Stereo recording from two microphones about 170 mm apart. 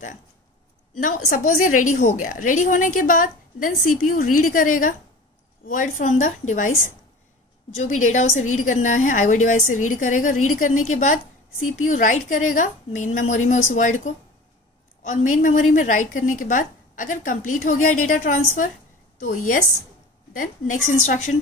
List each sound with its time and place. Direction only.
0.9 s a woman's voice: 50° left (ahead or behind)